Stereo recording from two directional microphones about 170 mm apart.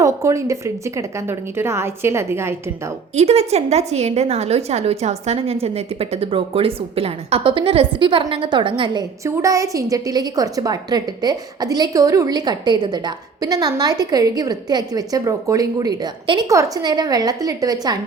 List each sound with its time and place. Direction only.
0.0 s a woman's voice: 20° right (ahead or behind)
3.2 s a woman's voice: 40° right (ahead or behind); by 17.9 s 20° right (ahead or behind)